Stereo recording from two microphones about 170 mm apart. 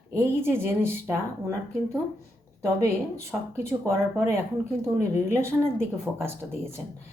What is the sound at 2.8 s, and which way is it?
Speech, 15° right (ahead or behind).